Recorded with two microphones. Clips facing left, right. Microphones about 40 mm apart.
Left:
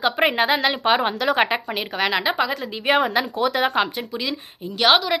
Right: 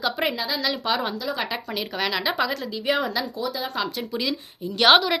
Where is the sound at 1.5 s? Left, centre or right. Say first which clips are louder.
Left 4 dB; left.